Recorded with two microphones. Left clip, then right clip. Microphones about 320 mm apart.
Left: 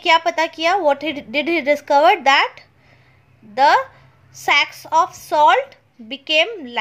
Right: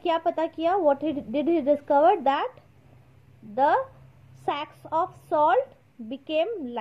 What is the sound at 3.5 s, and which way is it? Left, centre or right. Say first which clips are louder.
Speech: left 8 dB; centre.